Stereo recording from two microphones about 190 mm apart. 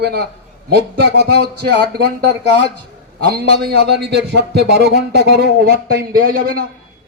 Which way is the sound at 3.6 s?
60° right (ahead or behind).